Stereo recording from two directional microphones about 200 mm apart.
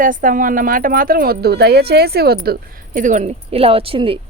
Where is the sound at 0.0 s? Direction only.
40° right (ahead or behind).